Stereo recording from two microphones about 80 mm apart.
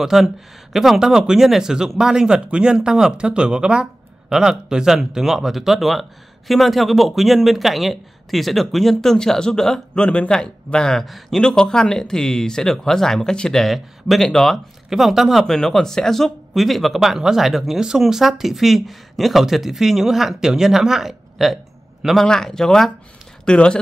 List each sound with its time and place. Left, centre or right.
0.0 s speech: centre